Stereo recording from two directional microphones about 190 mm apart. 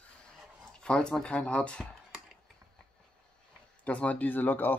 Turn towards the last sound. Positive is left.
turn(degrees=10)  # may be behind; listen again after turning